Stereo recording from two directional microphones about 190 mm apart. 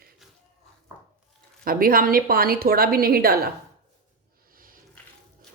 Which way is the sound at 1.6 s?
50° right (ahead or behind).